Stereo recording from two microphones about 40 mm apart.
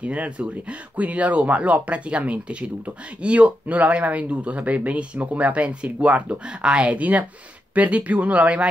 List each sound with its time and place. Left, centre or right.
0.0 s speech: right